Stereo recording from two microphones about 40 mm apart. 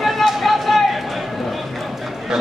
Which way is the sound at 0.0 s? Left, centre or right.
Centre.